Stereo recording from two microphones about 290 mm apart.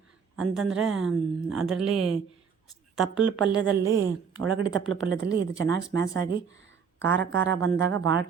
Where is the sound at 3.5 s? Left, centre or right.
Centre.